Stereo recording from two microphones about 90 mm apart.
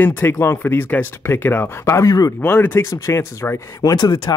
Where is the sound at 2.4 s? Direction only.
20° left (ahead or behind).